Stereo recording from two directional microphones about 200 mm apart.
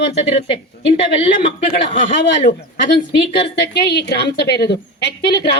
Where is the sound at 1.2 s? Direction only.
25° left (ahead or behind).